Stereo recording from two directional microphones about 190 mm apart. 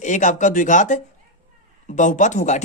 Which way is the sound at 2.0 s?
40° left (ahead or behind).